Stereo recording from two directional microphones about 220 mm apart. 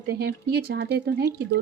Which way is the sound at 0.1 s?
45° right (ahead or behind).